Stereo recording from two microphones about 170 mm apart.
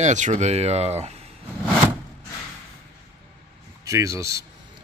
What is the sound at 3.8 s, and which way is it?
Speech, 20° right (ahead or behind).